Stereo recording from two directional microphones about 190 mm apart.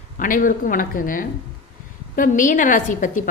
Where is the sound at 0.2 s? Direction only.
45° left (ahead or behind).